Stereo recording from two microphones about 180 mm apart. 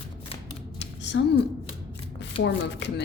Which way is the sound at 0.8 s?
75° left (ahead or behind).